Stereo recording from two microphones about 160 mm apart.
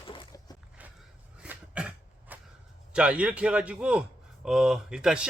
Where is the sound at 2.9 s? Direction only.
5° right (ahead or behind).